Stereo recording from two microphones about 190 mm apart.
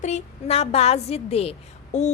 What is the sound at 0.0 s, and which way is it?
A woman's voice, 35° left (ahead or behind).